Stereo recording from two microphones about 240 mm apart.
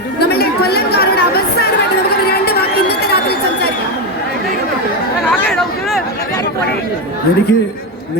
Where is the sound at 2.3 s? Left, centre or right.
Left.